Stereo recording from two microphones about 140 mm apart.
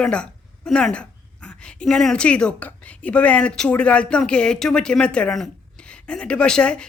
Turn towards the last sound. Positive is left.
turn(degrees=5)  # may be behind; listen again after turning